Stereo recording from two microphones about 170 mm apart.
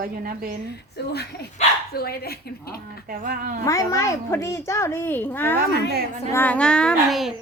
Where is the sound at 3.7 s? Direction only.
20° left (ahead or behind).